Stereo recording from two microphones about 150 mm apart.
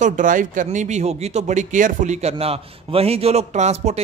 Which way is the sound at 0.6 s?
50° right (ahead or behind).